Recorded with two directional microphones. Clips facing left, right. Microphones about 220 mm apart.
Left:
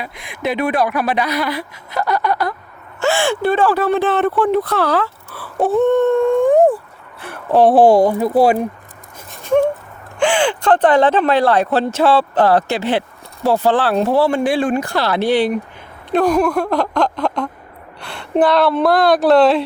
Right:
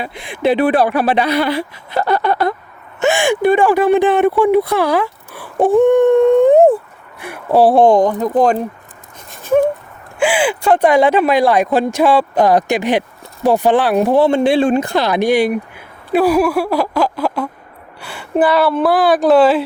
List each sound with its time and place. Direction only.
0.0 s speech: 30° right (ahead or behind)
7.2 s speech: 10° right (ahead or behind)
7.7 s speech: 5° left (ahead or behind)
9.3 s dog: 5° right (ahead or behind)
10.2 s speech: 5° right (ahead or behind)